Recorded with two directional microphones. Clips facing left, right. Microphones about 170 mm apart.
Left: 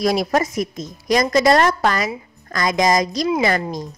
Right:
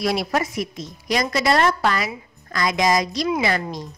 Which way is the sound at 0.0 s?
40° left (ahead or behind).